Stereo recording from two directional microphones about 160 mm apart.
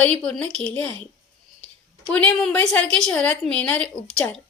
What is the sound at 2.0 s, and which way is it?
A woman's voice, 5° left (ahead or behind).